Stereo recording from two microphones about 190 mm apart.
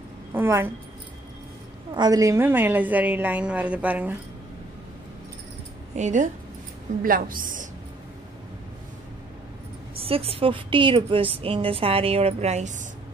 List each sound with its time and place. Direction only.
0.3 s speech: 10° right (ahead or behind)
2.0 s a woman's voice: 20° right (ahead or behind)
5.9 s a woman's voice: 40° right (ahead or behind)
9.9 s a woman's voice: 30° right (ahead or behind)